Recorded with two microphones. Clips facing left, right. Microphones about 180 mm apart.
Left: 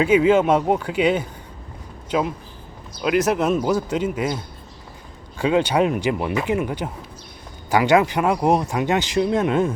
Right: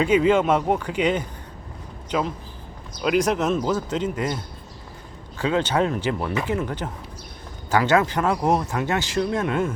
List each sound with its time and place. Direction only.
0.0 s speech: 10° left (ahead or behind)
5.4 s speech: 15° left (ahead or behind)